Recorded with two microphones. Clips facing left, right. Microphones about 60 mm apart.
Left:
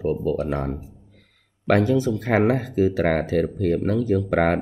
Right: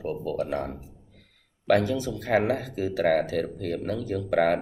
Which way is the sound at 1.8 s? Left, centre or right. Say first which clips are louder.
Left 7 dB; left.